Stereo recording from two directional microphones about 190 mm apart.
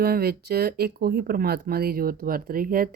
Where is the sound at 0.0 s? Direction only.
55° right (ahead or behind).